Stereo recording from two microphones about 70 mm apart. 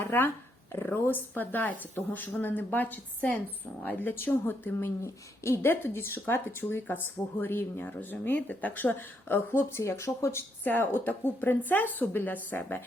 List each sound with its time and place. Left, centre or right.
0.0 s dog: left
0.9 s speech: left
5.0 s speech: left
10.6 s speech: left